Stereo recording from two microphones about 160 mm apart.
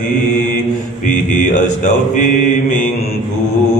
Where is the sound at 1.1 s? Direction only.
50° left (ahead or behind).